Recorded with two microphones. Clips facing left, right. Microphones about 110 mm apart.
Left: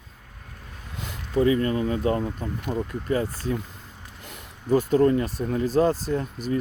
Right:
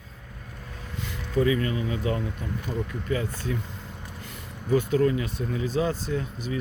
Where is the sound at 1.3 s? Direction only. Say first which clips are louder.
Left 3 dB; 35° left (ahead or behind).